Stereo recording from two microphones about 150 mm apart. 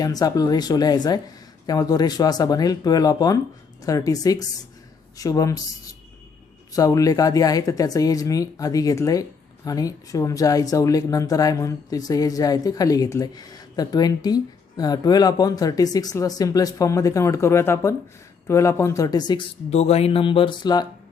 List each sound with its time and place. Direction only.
0.0 s a woman's voice: 25° left (ahead or behind)
19.7 s speech: 45° left (ahead or behind); by 20.8 s 30° left (ahead or behind)